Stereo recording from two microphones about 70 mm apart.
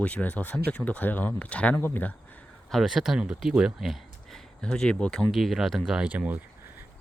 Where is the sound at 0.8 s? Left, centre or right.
Left.